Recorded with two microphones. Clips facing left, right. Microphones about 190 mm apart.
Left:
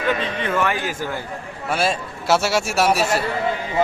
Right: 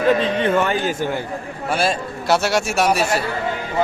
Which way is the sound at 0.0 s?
35° right (ahead or behind).